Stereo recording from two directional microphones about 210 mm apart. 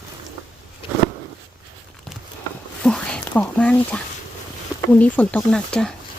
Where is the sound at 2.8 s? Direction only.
5° left (ahead or behind).